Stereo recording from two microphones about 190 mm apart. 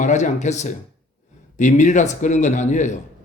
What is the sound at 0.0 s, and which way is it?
A man's voice, 40° left (ahead or behind).